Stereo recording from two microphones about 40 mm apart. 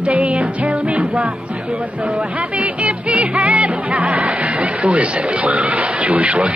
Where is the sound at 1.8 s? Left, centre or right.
Right.